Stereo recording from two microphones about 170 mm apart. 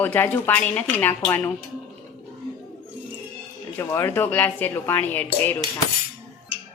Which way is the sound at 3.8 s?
15° left (ahead or behind).